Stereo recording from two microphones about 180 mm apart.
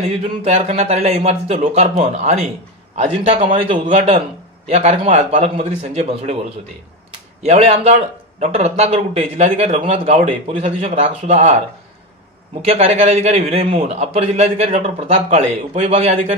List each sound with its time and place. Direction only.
0.4 s speech: 35° right (ahead or behind)
12.6 s speech: 35° right (ahead or behind)